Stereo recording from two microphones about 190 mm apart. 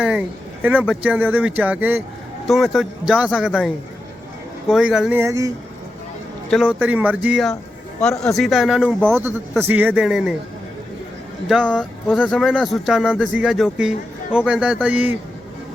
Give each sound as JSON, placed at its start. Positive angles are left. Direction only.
{"t": 0.0, "sound": "speech", "side_deg": -5}
{"t": 4.7, "sound": "speech", "side_deg": -5}
{"t": 5.2, "sound": "speech", "side_deg": -15}
{"t": 6.5, "sound": "speech", "side_deg": -5}
{"t": 11.4, "sound": "speech", "side_deg": 0}